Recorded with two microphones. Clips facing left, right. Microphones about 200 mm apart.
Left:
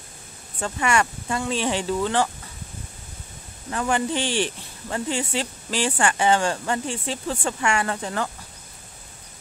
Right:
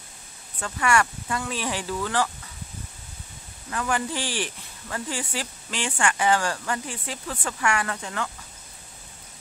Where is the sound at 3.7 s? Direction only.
25° left (ahead or behind).